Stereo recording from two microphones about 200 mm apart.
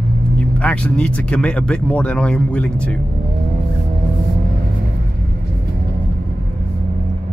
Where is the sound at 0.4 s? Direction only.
5° left (ahead or behind).